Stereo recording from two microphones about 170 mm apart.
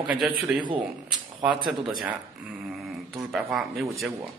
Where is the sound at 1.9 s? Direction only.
Centre (ahead or behind).